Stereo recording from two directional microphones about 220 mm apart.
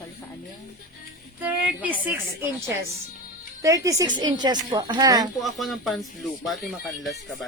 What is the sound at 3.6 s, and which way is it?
Speech, 15° right (ahead or behind).